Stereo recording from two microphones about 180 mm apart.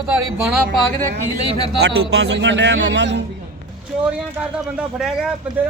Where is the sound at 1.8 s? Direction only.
70° right (ahead or behind).